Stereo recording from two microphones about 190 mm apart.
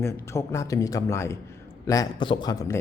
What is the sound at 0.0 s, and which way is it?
A man's voice, 15° left (ahead or behind).